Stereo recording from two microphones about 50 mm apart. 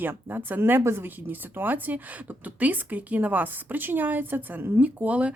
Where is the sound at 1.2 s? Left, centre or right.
Right.